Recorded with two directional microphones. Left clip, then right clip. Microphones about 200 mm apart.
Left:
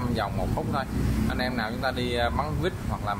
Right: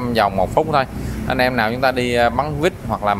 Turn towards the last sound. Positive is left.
turn(degrees=-30)  # may be behind; listen again after turning